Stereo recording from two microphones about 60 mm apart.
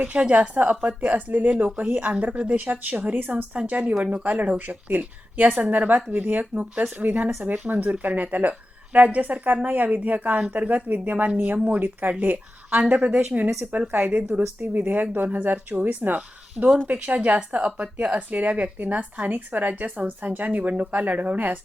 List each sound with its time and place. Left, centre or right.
0.0 s speech: right